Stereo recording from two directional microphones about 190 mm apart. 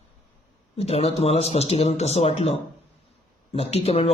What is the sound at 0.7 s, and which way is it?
Speech, 30° left (ahead or behind).